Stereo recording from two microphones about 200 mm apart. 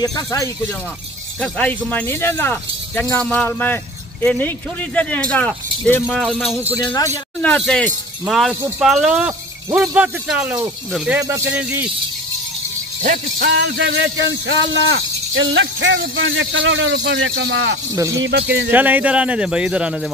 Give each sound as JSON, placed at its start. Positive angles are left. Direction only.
{"t": 0.0, "sound": "speech", "side_deg": 15}
{"t": 6.8, "sound": "speech", "side_deg": 25}
{"t": 7.4, "sound": "speech", "side_deg": 5}
{"t": 13.0, "sound": "jingle bell", "side_deg": -40}
{"t": 13.5, "sound": "speech", "side_deg": -65}
{"t": 18.7, "sound": "speech", "side_deg": -10}